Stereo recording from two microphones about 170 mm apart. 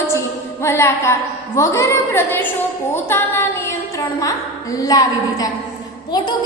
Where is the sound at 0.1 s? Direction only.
15° left (ahead or behind).